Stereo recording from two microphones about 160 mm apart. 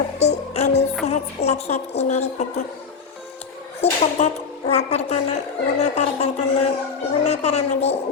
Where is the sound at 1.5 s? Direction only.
40° left (ahead or behind).